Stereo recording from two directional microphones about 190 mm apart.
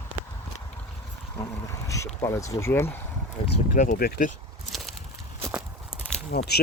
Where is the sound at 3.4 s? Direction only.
25° left (ahead or behind).